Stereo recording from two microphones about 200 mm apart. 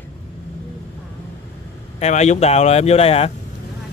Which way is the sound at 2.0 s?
35° left (ahead or behind).